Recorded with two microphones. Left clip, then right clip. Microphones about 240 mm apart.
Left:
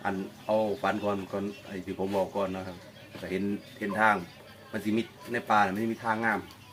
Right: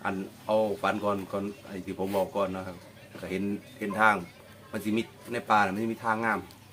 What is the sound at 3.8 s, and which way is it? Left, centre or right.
Speech, centre.